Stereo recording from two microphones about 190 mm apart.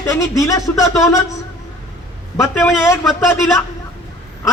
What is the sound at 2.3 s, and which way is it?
Speech, 15° left (ahead or behind).